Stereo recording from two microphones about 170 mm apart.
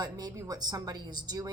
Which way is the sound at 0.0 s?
25° right (ahead or behind).